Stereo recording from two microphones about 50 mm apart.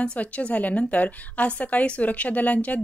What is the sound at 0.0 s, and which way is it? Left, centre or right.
A woman's voice, left.